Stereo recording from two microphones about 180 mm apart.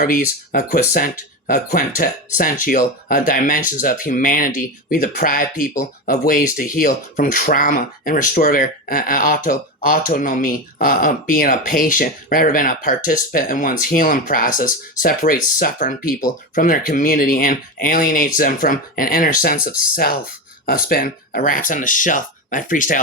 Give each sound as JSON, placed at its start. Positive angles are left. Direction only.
{"t": 0.0, "sound": "speech", "side_deg": 55}